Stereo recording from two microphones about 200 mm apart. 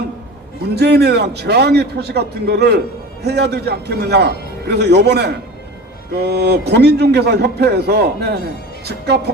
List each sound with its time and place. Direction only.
0.8 s a man's voice: 55° right (ahead or behind)